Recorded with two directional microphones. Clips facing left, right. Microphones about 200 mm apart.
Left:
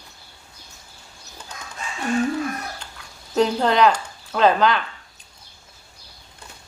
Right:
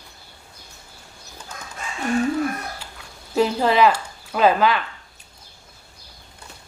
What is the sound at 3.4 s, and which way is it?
Speech, 5° right (ahead or behind).